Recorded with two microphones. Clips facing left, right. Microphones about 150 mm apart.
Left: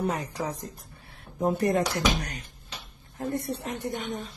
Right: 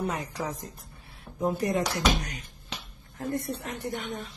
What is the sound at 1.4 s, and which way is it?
Speech, 55° left (ahead or behind).